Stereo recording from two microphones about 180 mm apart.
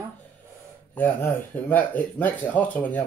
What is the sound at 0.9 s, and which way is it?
Speech, 10° left (ahead or behind).